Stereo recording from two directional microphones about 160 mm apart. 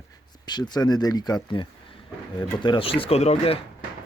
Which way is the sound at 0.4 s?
25° left (ahead or behind).